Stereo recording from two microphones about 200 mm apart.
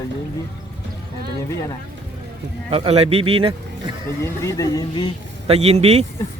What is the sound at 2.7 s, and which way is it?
Speech, 30° right (ahead or behind).